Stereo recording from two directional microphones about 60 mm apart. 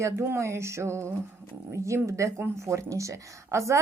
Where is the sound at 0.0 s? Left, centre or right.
Right.